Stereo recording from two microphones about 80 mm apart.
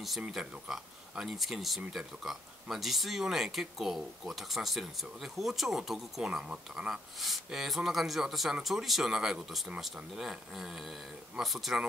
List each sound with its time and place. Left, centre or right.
0.3 s speech: centre